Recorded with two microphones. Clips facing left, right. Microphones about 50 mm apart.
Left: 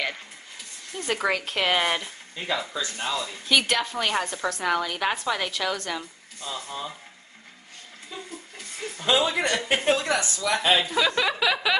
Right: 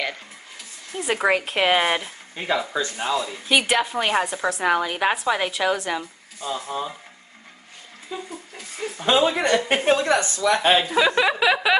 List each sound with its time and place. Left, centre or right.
0.9 s a woman's voice: centre
2.3 s speech: right
3.4 s a woman's voice: centre
8.1 s speech: centre
9.0 s speech: right
11.0 s speech: centre